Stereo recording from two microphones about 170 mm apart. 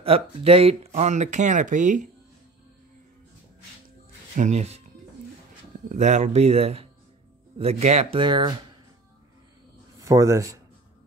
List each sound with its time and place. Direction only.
0.0 s speech: 35° right (ahead or behind)
4.4 s speech: 40° right (ahead or behind)
5.9 s speech: 45° right (ahead or behind); by 8.5 s 25° right (ahead or behind)
9.9 s speech: 20° right (ahead or behind)